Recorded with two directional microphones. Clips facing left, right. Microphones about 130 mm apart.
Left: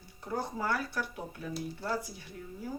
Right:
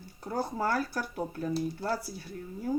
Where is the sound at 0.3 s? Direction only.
40° right (ahead or behind).